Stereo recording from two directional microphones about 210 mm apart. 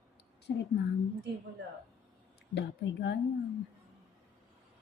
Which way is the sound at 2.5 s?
55° left (ahead or behind).